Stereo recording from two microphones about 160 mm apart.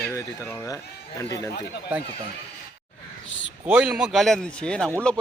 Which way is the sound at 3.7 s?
10° right (ahead or behind).